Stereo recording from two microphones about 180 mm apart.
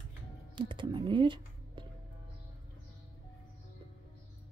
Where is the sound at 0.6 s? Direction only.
25° right (ahead or behind).